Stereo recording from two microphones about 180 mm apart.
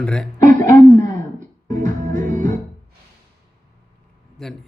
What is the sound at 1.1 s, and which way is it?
Music, 45° right (ahead or behind).